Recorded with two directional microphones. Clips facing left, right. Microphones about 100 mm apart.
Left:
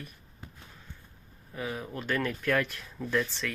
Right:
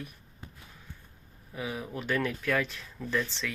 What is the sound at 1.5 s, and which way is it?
Speech, 5° right (ahead or behind).